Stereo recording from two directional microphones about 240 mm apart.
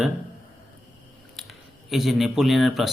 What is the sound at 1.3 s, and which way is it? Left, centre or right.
Speech, centre.